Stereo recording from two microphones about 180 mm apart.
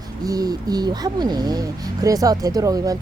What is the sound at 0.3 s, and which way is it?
Speech, 20° right (ahead or behind).